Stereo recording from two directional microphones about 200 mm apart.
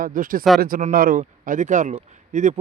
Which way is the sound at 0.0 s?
45° right (ahead or behind).